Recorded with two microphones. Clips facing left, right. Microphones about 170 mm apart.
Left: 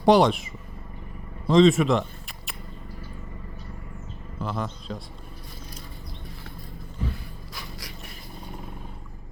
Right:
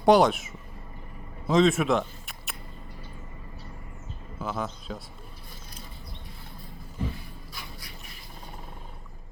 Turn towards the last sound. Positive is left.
turn(degrees=90)